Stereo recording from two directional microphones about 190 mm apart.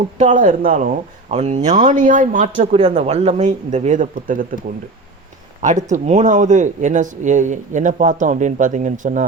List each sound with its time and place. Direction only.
0.2 s speech: 40° right (ahead or behind)
2.7 s speech: 30° right (ahead or behind)
5.6 s speech: 40° right (ahead or behind)